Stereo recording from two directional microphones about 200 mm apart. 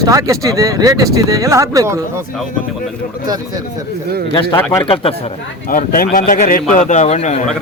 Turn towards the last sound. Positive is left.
turn(degrees=35)  # may be behind; listen again after turning